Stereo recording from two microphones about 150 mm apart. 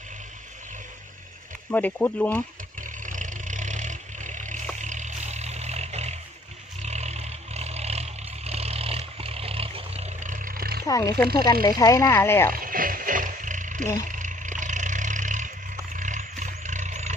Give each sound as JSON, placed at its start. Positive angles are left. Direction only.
{"t": 1.7, "sound": "speech", "side_deg": 10}
{"t": 2.8, "sound": "vehicle", "side_deg": -60}
{"t": 10.3, "sound": "a sound", "side_deg": -65}
{"t": 10.8, "sound": "speech", "side_deg": 25}
{"t": 12.5, "sound": "music", "side_deg": -70}
{"t": 14.0, "sound": "a sound", "side_deg": -60}